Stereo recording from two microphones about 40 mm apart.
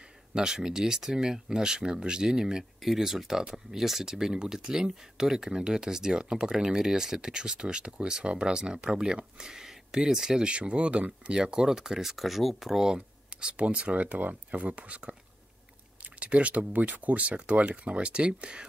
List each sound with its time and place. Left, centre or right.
0.3 s speech: centre
12.8 s speech: right